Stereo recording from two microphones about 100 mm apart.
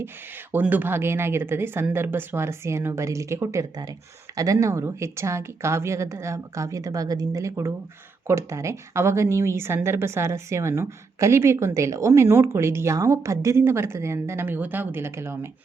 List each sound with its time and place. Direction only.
0.5 s a woman's voice: 20° right (ahead or behind)